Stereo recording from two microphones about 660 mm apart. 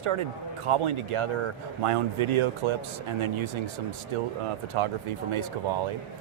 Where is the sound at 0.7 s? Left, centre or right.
Right.